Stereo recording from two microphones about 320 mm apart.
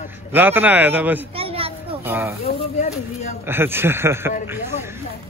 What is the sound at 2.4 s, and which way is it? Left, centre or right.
Speech, centre.